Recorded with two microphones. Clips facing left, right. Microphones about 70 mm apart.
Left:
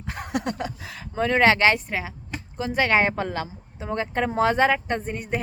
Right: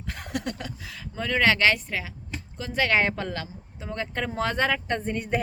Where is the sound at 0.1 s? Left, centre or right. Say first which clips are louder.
Left 4 dB; left.